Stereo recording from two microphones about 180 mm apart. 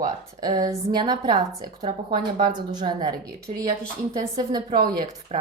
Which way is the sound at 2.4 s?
25° right (ahead or behind).